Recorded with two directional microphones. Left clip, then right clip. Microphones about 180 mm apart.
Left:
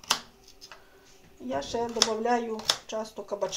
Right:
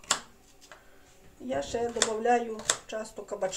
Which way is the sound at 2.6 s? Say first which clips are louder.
Left 3 dB; centre (ahead or behind).